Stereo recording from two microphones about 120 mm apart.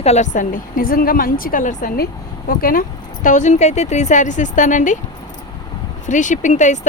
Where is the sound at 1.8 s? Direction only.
90° left.